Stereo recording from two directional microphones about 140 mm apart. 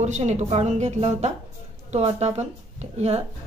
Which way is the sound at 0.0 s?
55° right (ahead or behind).